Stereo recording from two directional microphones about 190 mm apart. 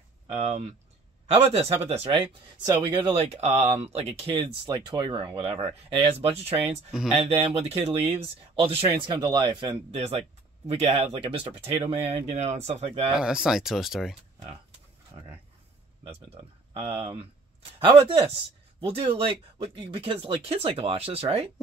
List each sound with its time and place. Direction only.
0.3 s speech: 35° right (ahead or behind)
13.1 s speech: 5° right (ahead or behind)
15.1 s speech: 25° right (ahead or behind)